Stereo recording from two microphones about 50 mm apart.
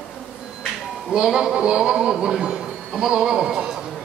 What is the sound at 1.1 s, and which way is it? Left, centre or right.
A man's voice, centre.